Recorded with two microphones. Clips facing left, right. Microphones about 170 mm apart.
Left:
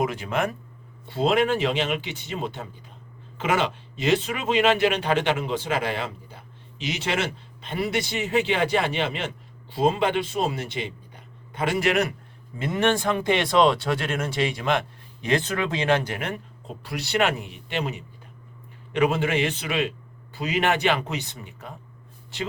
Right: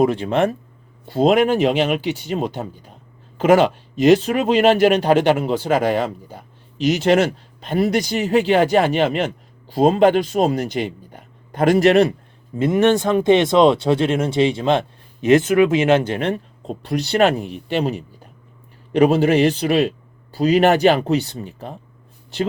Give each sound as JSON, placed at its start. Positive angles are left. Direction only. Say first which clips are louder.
{"t": 0.0, "sound": "speech", "louder": "right 8 dB", "side_deg": -30}
{"t": 1.0, "sound": "speech", "louder": "right 6 dB", "side_deg": -40}
{"t": 12.5, "sound": "speech", "louder": "right 8 dB", "side_deg": -20}
{"t": 16.6, "sound": "speech", "louder": "right 11 dB", "side_deg": -35}